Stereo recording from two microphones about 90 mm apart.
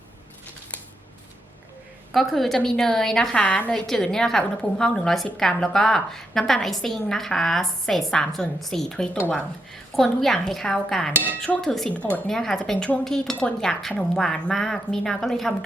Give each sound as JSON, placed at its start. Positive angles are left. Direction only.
{"t": 2.1, "sound": "a woman's voice", "side_deg": 0}
{"t": 11.9, "sound": "speech", "side_deg": 15}
{"t": 12.3, "sound": "a woman's voice", "side_deg": 5}